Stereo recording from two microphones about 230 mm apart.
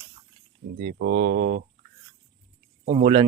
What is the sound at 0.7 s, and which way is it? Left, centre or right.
Speech, right.